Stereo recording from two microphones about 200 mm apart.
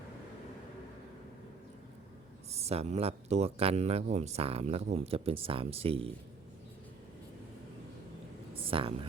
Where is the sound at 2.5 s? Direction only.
30° right (ahead or behind).